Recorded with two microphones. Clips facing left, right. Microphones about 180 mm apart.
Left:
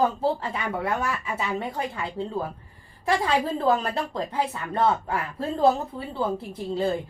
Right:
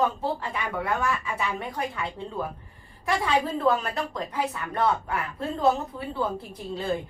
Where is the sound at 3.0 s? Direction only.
30° left (ahead or behind).